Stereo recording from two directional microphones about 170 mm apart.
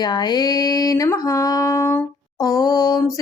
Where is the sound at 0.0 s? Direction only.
25° left (ahead or behind).